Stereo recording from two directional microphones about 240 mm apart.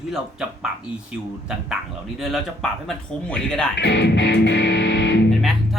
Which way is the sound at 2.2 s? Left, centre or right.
Centre.